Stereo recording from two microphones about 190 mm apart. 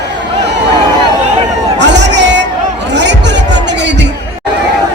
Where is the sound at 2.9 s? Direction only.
65° right (ahead or behind).